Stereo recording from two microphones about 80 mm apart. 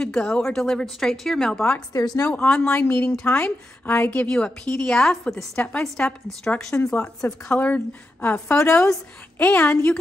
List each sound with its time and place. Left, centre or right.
0.0 s a woman's voice: centre
1.9 s a woman's voice: left
2.2 s a woman's voice: centre
7.4 s a woman's voice: centre